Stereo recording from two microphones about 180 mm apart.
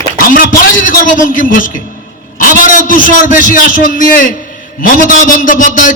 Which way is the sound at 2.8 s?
50° left (ahead or behind).